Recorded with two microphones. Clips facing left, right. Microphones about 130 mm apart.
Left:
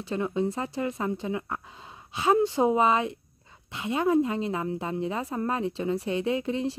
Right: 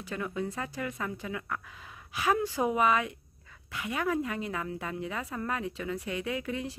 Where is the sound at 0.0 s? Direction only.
25° left (ahead or behind).